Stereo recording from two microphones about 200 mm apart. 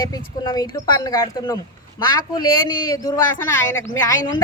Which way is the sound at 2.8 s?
15° left (ahead or behind).